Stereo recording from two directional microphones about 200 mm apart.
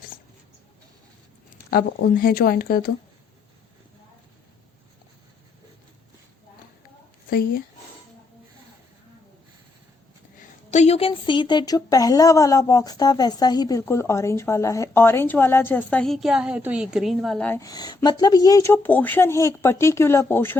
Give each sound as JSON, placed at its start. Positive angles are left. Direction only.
{"t": 1.7, "sound": "speech", "side_deg": 45}
{"t": 7.3, "sound": "speech", "side_deg": 45}
{"t": 10.7, "sound": "speech", "side_deg": 35}